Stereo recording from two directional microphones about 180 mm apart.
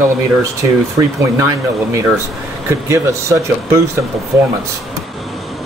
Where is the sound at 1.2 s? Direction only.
15° right (ahead or behind).